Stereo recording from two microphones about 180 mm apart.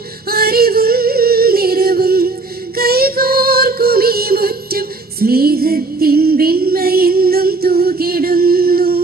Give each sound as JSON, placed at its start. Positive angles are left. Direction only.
{"t": 0.3, "sound": "music", "side_deg": -60}